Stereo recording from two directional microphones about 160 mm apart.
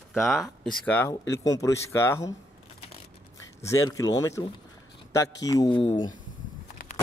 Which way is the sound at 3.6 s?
20° left (ahead or behind).